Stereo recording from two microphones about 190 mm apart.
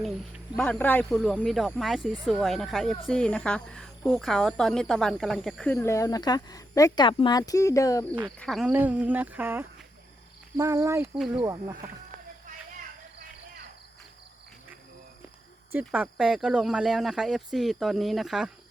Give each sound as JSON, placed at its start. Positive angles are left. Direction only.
{"t": 0.0, "sound": "speech", "side_deg": 0}
{"t": 5.7, "sound": "speech", "side_deg": 15}
{"t": 8.4, "sound": "speech", "side_deg": 0}
{"t": 15.7, "sound": "speech", "side_deg": -5}